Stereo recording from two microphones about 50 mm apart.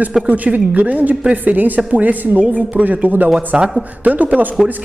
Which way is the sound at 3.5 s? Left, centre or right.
Centre.